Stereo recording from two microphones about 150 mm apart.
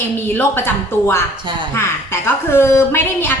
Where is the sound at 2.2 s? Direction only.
15° left (ahead or behind).